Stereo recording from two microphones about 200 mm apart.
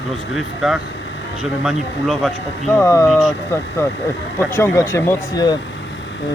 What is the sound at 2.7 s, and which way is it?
Speech, 15° left (ahead or behind).